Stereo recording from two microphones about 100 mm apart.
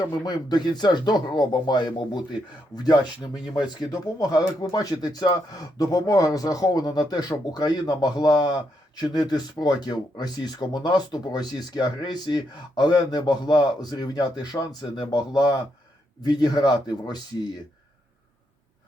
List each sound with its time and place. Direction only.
0.0 s speech: 45° left (ahead or behind)